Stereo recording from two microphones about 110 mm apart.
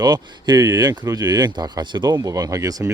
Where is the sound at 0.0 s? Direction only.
40° right (ahead or behind).